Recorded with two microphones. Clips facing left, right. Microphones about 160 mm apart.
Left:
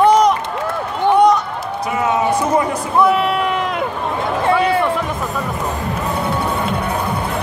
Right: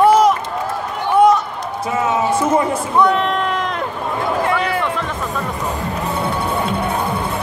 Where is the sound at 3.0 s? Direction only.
5° left (ahead or behind).